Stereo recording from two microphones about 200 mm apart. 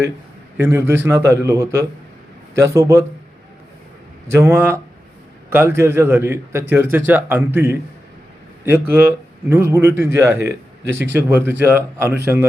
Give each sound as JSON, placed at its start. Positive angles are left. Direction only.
{"t": 0.5, "sound": "a man's voice", "side_deg": -10}
{"t": 4.3, "sound": "a man's voice", "side_deg": -15}